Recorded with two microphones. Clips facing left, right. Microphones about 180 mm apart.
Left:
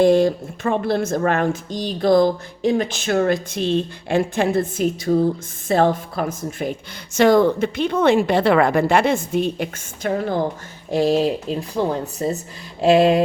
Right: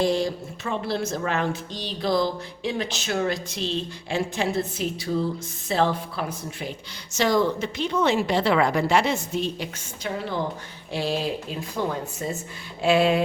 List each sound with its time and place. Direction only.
0.0 s speech: 55° left (ahead or behind)